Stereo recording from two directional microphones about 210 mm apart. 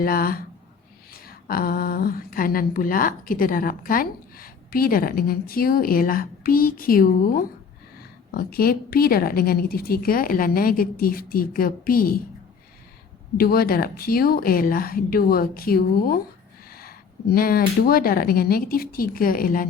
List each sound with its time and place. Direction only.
0.0 s speech: 45° left (ahead or behind)
8.3 s speech: 45° left (ahead or behind)
13.3 s speech: 45° left (ahead or behind)